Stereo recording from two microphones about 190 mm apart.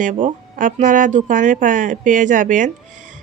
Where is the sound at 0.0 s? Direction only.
45° right (ahead or behind).